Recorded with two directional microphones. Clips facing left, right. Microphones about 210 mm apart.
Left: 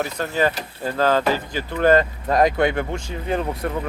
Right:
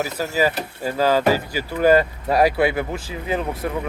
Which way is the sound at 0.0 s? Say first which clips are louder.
Right 1 dB; 5° right (ahead or behind).